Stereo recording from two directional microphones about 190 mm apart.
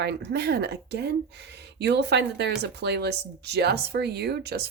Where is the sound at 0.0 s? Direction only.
60° right (ahead or behind).